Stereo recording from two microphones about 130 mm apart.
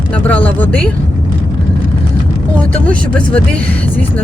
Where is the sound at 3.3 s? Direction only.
10° left (ahead or behind).